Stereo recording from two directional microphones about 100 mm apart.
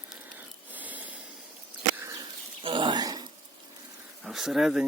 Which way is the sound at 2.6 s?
50° right (ahead or behind).